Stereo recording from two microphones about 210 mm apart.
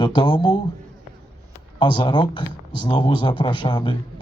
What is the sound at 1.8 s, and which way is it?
Speech, 20° left (ahead or behind).